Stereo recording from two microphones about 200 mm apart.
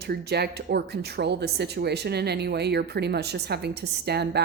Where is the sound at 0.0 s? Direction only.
55° right (ahead or behind).